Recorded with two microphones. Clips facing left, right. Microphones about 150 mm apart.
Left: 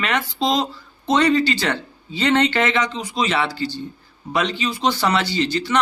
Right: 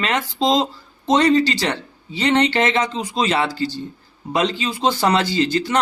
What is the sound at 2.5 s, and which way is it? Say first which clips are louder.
Speech: right 1 dB; 35° right (ahead or behind).